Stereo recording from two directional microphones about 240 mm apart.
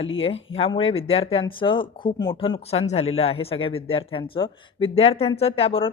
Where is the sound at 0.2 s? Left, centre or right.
Left.